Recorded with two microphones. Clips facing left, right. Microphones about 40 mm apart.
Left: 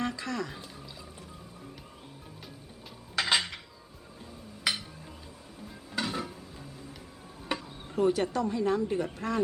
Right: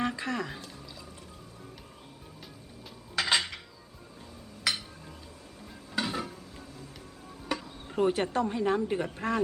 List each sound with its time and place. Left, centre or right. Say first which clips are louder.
0.0 s speech: right 2 dB; right
3.2 s cutlery: even; centre
5.9 s dishes: right 1 dB; centre
7.4 s insect: even; centre
7.9 s speech: even; right